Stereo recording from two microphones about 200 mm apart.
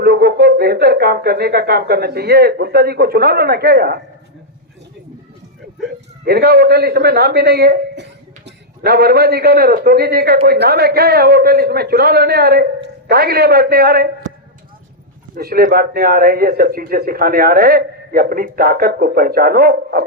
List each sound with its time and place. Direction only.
0.0 s a man's voice: 50° right (ahead or behind)
6.2 s a man's voice: 50° right (ahead or behind)
15.4 s a man's voice: 50° right (ahead or behind)